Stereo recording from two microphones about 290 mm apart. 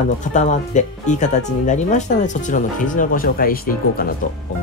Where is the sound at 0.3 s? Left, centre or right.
Left.